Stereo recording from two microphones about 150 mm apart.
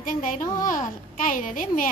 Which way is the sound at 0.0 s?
65° left (ahead or behind).